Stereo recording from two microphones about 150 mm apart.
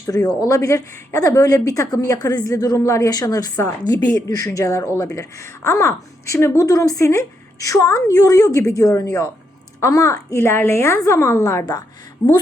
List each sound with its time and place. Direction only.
0.3 s a woman's voice: 25° left (ahead or behind)